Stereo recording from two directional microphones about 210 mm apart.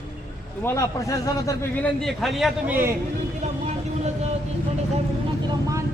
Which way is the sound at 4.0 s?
30° right (ahead or behind).